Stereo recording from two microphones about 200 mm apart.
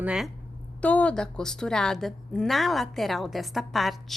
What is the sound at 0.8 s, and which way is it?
A woman's voice, 5° left (ahead or behind).